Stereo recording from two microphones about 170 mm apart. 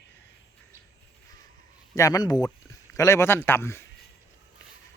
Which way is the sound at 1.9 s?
20° left (ahead or behind).